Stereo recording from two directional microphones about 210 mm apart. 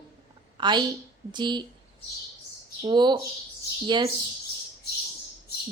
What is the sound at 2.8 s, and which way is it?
A woman's voice, 20° right (ahead or behind).